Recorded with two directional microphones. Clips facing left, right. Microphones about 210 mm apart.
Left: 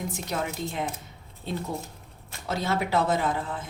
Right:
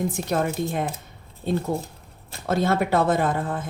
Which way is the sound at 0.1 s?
55° right (ahead or behind).